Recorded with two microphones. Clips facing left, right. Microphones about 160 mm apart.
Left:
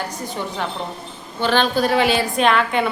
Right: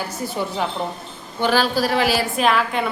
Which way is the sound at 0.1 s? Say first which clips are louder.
Right 2 dB; 5° right (ahead or behind).